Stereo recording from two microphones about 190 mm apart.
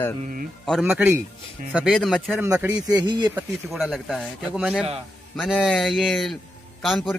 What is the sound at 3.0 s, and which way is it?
Speech, 25° right (ahead or behind).